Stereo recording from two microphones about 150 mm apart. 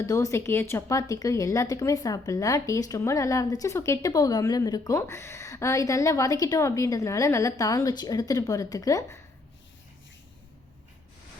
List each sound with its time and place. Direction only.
0.0 s speech: 20° left (ahead or behind)